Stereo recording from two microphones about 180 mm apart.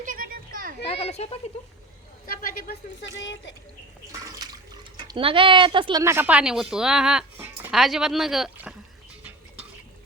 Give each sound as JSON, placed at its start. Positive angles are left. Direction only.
{"t": 0.0, "sound": "children playing", "side_deg": -50}
{"t": 0.9, "sound": "speech", "side_deg": 35}
{"t": 2.2, "sound": "a man's voice", "side_deg": 55}
{"t": 3.0, "sound": "speech", "side_deg": 85}
{"t": 4.1, "sound": "speech", "side_deg": -20}